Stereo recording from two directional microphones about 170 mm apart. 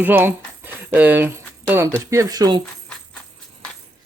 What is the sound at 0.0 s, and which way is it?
Jingle bell, 10° right (ahead or behind).